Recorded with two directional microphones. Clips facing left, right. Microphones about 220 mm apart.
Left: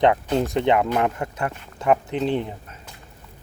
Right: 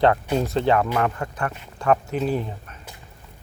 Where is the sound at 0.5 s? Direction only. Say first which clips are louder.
Even; 20° left (ahead or behind).